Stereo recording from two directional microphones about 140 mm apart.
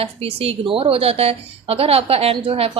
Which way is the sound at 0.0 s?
45° right (ahead or behind).